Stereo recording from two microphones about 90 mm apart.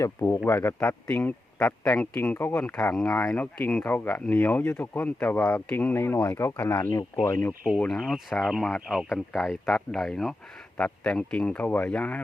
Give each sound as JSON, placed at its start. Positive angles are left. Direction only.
{"t": 0.0, "sound": "speech", "side_deg": 35}
{"t": 2.1, "sound": "speech", "side_deg": 20}
{"t": 2.9, "sound": "speech", "side_deg": 10}
{"t": 3.3, "sound": "speech", "side_deg": 15}
{"t": 6.9, "sound": "speech", "side_deg": 40}
{"t": 7.9, "sound": "speech", "side_deg": 5}